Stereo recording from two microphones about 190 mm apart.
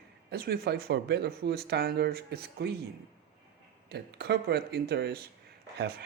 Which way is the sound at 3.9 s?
60° right (ahead or behind).